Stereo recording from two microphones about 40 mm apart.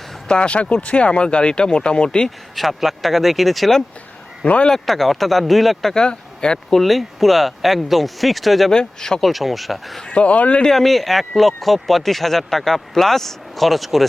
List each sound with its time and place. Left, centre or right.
0.3 s speech: left
2.6 s speech: centre
4.4 s speech: left
4.7 s speech: centre
5.9 s speech: left
6.7 s speech: centre
8.7 s speech: centre
9.2 s speech: centre
10.1 s speech: left
10.7 s speech: centre